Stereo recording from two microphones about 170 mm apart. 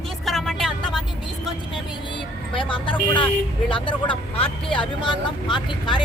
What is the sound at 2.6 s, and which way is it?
Speech, 30° left (ahead or behind).